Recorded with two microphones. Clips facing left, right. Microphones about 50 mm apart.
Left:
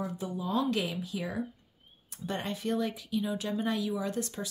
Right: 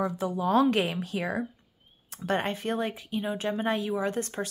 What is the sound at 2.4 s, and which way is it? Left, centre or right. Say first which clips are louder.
Speech: right 2 dB; right.